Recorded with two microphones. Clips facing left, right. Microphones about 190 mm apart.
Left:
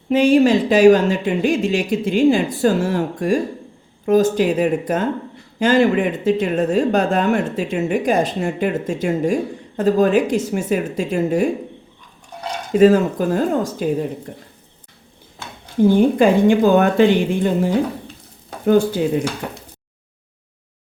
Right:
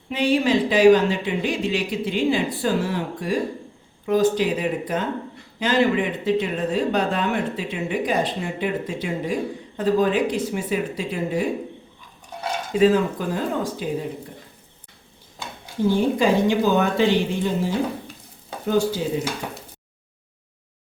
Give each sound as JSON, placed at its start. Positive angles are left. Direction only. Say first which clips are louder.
{"t": 0.1, "sound": "speech", "louder": "left 7 dB", "side_deg": 45}
{"t": 12.7, "sound": "speech", "louder": "left 5 dB", "side_deg": 50}
{"t": 16.0, "sound": "a woman's voice", "louder": "left 4 dB", "side_deg": 55}